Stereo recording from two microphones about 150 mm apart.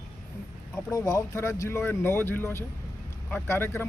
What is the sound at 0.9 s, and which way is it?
Speech, 20° left (ahead or behind).